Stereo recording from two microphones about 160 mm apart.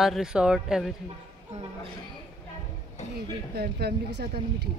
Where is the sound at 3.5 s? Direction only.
85° right.